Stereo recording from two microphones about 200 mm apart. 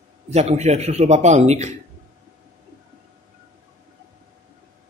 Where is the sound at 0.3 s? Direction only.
35° right (ahead or behind).